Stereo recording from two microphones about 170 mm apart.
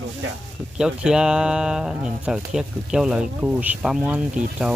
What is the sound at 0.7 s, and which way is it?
Speech, 5° right (ahead or behind).